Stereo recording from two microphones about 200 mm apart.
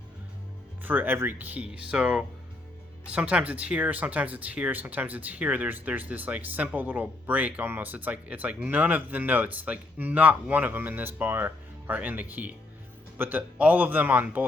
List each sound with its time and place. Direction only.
0.8 s speech: 10° right (ahead or behind)